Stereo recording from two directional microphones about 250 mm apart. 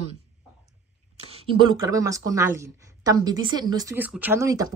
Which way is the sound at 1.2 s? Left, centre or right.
Right.